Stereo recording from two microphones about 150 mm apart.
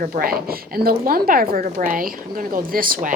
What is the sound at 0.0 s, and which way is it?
A woman's voice, 75° right (ahead or behind).